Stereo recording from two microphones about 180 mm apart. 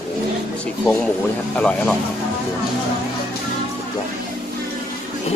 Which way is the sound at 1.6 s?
5° left (ahead or behind).